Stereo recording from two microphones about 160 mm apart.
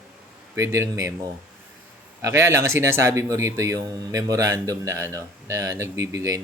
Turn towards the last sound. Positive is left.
turn(degrees=-20)  # may be behind; listen again after turning